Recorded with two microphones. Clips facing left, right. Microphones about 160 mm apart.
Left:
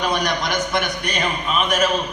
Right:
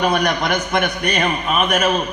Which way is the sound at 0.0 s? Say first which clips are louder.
Right 4 dB; 60° right (ahead or behind).